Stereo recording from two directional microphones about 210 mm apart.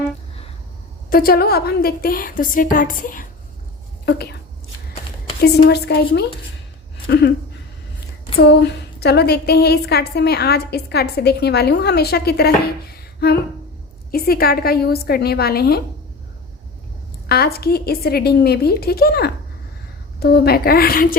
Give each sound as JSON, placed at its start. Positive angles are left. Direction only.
{"t": 1.1, "sound": "a woman's voice", "side_deg": 45}
{"t": 5.4, "sound": "a woman's voice", "side_deg": 50}
{"t": 8.4, "sound": "a woman's voice", "side_deg": 50}
{"t": 17.2, "sound": "a woman's voice", "side_deg": 45}